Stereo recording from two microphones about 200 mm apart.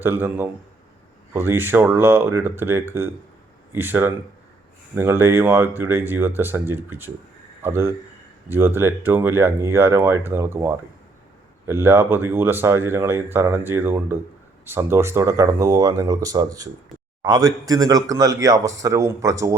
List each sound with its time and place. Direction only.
0.0 s speech: 10° right (ahead or behind)